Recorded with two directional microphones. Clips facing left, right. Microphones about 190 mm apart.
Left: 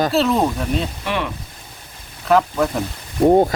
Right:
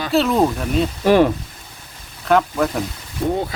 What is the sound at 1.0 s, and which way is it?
Speech, 40° right (ahead or behind).